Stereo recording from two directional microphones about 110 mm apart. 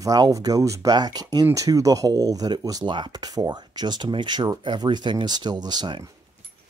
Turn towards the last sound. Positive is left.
turn(degrees=-40)  # may be behind; listen again after turning